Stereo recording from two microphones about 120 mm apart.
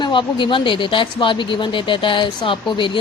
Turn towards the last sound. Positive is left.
turn(degrees=45)  # may be behind; listen again after turning